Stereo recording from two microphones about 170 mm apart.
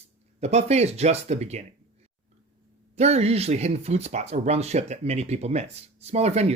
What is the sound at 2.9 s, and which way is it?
Speech, 40° right (ahead or behind).